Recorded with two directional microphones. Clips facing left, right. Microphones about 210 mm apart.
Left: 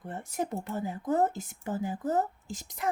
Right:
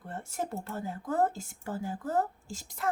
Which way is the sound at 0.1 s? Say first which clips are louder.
Left 2 dB; 15° left (ahead or behind).